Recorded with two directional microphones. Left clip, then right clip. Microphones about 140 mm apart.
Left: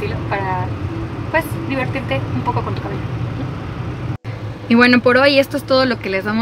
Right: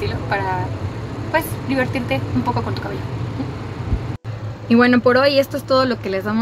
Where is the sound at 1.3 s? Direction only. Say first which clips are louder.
Left 1 dB; 10° right (ahead or behind).